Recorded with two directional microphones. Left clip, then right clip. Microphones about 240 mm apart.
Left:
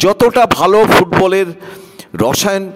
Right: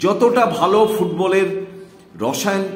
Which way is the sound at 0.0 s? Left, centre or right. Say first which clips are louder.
Left 5 dB; left.